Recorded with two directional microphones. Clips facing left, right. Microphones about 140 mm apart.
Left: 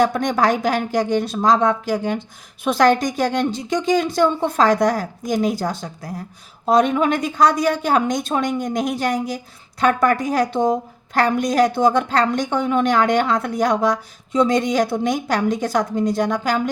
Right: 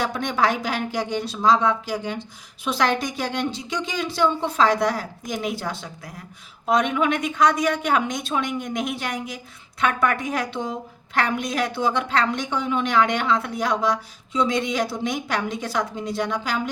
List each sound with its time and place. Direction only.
0.0 s a woman's voice: 45° left (ahead or behind)